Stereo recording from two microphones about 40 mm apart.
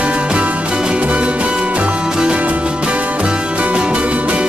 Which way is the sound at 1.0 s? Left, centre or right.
Right.